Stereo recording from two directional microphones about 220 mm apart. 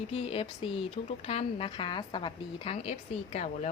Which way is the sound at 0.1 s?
25° left (ahead or behind).